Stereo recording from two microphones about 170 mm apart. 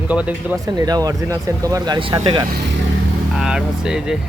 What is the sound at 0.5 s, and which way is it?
Speech, 20° right (ahead or behind).